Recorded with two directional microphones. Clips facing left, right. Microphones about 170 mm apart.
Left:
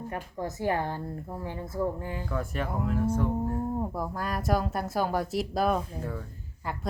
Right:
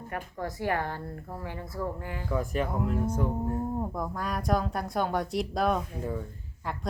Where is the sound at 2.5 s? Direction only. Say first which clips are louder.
Right 2 dB; centre (ahead or behind).